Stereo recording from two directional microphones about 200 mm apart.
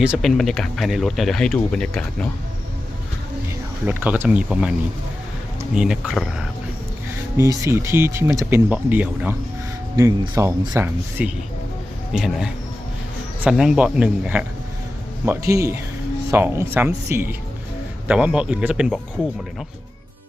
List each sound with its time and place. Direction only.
0.0 s speech: 5° right (ahead or behind)
3.8 s speech: 10° right (ahead or behind)
5.7 s speech: 5° right (ahead or behind)
7.3 s speech: 15° right (ahead or behind)
11.2 s speech: 5° right (ahead or behind)